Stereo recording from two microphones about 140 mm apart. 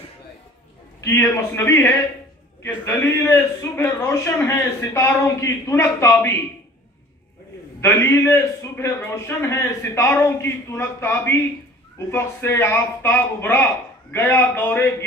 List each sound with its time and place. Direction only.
1.0 s a man's voice: 15° left (ahead or behind)
7.8 s a man's voice: 20° left (ahead or behind)